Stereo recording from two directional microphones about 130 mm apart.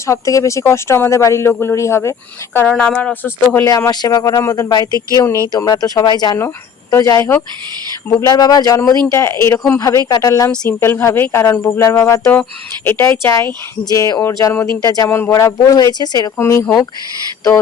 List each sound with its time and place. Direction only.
0.0 s speech: 25° left (ahead or behind)
3.7 s speech: 25° left (ahead or behind)
4.9 s speech: 25° right (ahead or behind)
5.1 s speech: 20° left (ahead or behind)
8.2 s speech: 30° left (ahead or behind)
16.4 s speech: 20° left (ahead or behind)